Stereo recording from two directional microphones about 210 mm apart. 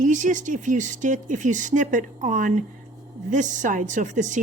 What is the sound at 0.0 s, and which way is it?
A woman's voice, 35° right (ahead or behind).